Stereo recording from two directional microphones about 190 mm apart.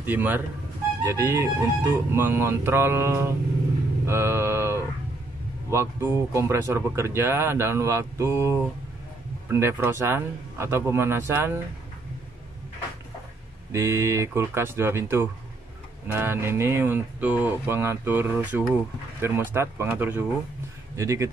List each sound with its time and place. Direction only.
0.0 s speech: 10° right (ahead or behind)
4.0 s a sound: 15° right (ahead or behind)
5.7 s speech: 15° right (ahead or behind)
13.7 s speech: 15° right (ahead or behind)